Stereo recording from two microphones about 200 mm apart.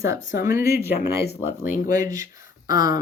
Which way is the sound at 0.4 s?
15° right (ahead or behind).